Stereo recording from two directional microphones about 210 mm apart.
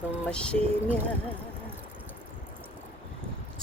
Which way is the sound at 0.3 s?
5° left (ahead or behind).